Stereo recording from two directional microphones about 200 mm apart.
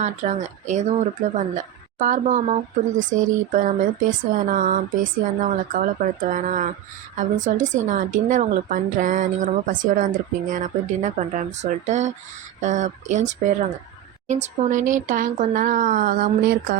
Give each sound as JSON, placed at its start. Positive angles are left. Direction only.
{"t": 0.0, "sound": "a woman's voice", "side_deg": -35}